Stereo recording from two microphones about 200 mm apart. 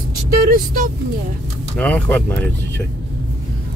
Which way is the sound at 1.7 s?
10° left (ahead or behind).